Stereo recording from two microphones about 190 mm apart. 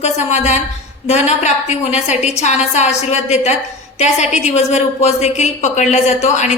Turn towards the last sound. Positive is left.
turn(degrees=35)  # may be behind; listen again after turning